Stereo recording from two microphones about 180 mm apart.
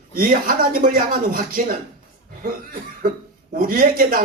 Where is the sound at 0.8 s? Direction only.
50° right (ahead or behind).